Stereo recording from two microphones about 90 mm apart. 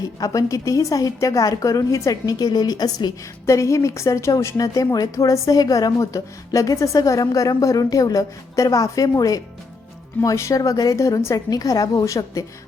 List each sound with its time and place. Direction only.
0.2 s a woman's voice: 40° left (ahead or behind)
3.4 s a woman's voice: 35° left (ahead or behind)